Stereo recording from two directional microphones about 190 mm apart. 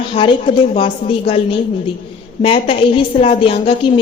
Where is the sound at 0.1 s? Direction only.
30° left (ahead or behind).